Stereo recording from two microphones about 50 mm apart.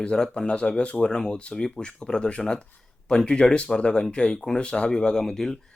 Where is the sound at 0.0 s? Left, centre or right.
Centre.